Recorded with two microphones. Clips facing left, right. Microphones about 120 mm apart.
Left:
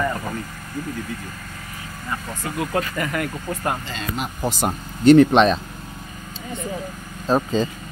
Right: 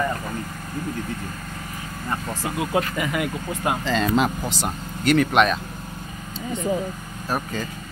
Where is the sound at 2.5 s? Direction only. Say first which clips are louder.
Even; 20° right (ahead or behind).